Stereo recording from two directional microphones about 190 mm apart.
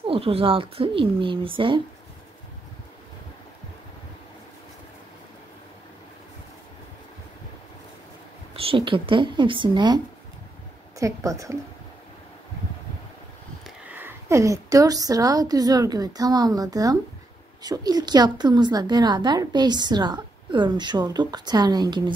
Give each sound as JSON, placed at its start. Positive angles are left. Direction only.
{"t": 0.0, "sound": "a woman's voice", "side_deg": -30}
{"t": 8.5, "sound": "a woman's voice", "side_deg": -30}
{"t": 13.7, "sound": "a woman's voice", "side_deg": -10}